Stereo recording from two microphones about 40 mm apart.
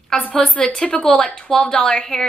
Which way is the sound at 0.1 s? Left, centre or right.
Centre.